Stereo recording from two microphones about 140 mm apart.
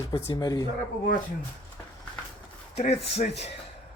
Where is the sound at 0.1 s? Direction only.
25° left (ahead or behind).